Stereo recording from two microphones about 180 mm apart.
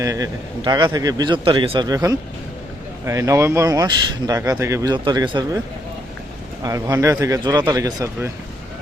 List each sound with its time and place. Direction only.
0.0 s speech: 20° right (ahead or behind)
6.6 s speech: 15° right (ahead or behind)